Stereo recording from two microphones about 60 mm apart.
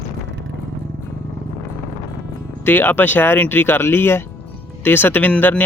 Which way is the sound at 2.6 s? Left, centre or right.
Left.